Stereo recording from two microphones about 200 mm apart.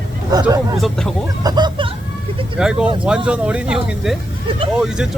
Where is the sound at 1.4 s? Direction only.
20° right (ahead or behind).